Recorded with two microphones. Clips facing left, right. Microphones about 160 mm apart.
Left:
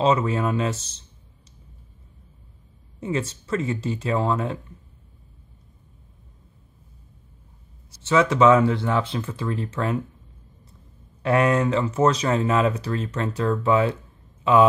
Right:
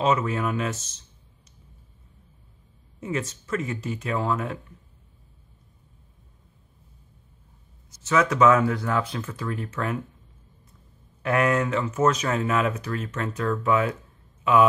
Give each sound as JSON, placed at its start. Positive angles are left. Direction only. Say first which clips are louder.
{"t": 0.0, "sound": "speech", "louder": "left 3 dB", "side_deg": 30}
{"t": 3.0, "sound": "speech", "louder": "left 3 dB", "side_deg": 30}
{"t": 7.9, "sound": "speech", "louder": "left 3 dB", "side_deg": 30}
{"t": 11.2, "sound": "speech", "louder": "left 3 dB", "side_deg": 30}